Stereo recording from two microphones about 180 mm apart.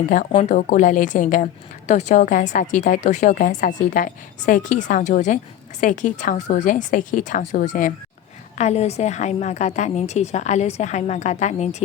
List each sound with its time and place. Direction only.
0.3 s a woman's voice: 45° left (ahead or behind)